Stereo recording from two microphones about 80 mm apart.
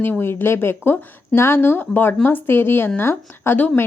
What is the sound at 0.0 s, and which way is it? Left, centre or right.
A woman's voice, left.